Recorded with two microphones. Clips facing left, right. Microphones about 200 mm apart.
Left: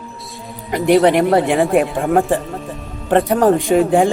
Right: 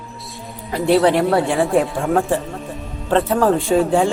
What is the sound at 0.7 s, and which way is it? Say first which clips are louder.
A man's voice: left 2 dB; 15° left (ahead or behind).